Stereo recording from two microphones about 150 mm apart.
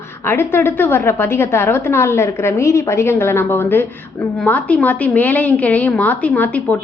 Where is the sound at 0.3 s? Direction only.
15° left (ahead or behind).